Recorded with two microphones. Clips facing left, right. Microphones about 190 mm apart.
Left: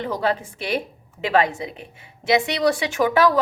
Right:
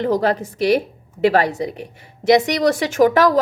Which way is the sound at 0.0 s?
45° right (ahead or behind).